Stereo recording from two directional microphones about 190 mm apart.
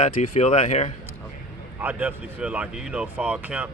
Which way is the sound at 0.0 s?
30° left (ahead or behind).